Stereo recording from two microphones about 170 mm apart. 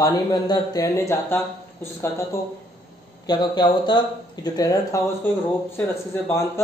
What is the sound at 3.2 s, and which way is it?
Speech, 25° left (ahead or behind).